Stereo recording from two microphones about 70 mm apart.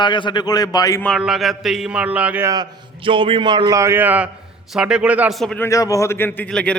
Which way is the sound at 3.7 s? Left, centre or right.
Right.